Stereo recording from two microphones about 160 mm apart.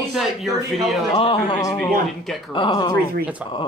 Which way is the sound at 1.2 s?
35° left (ahead or behind).